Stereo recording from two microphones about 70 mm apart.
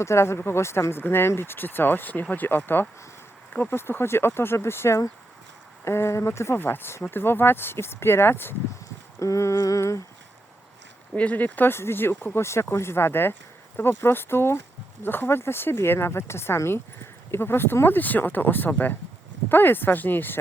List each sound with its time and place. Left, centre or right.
0.0 s speech: left
9.1 s humming: left
11.1 s speech: centre